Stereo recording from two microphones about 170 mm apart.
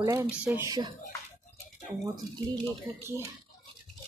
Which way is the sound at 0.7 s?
25° right (ahead or behind).